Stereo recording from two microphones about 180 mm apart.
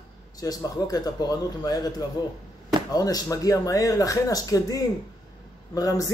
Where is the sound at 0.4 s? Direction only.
20° left (ahead or behind).